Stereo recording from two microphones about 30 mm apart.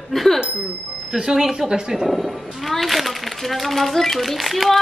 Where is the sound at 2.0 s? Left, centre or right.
Centre.